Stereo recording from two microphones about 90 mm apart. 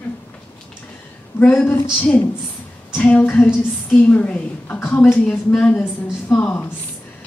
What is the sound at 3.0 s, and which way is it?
A woman's voice, 15° left (ahead or behind).